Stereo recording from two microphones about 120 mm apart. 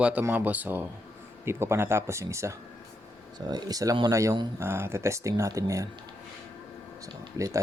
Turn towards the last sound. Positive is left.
turn(degrees=-25)  # may be behind; listen again after turning